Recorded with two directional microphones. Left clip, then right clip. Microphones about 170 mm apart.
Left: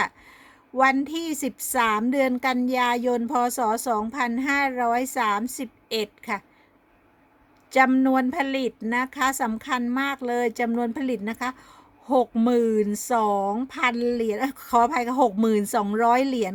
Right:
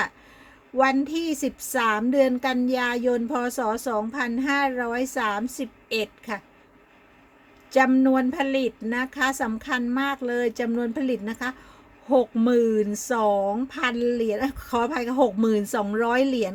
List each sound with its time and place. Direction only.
0.8 s speech: 25° left (ahead or behind)
7.7 s speech: 25° left (ahead or behind)